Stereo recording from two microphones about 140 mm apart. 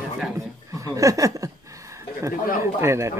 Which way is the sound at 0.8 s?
25° right (ahead or behind).